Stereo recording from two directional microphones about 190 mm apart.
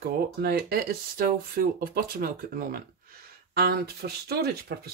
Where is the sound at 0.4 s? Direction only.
55° right (ahead or behind).